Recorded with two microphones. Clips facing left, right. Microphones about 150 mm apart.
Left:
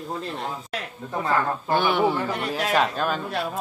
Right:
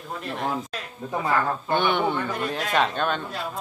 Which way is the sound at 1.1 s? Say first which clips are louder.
Even; 5° right (ahead or behind).